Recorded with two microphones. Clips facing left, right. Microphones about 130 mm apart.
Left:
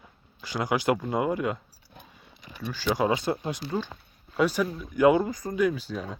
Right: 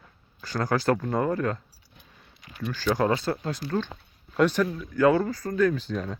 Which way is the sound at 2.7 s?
10° left (ahead or behind).